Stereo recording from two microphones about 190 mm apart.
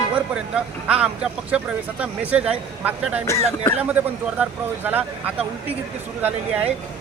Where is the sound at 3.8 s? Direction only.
10° right (ahead or behind).